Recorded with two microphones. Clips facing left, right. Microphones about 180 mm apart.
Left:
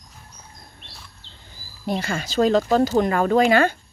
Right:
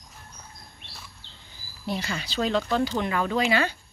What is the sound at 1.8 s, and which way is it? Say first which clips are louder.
Speech: left 5 dB; 50° left (ahead or behind).